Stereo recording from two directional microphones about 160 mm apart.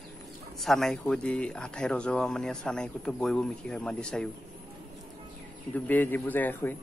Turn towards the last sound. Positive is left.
turn(degrees=10)  # may be behind; listen again after turning